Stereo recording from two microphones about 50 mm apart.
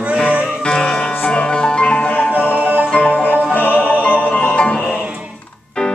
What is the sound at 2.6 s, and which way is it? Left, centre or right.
Music, right.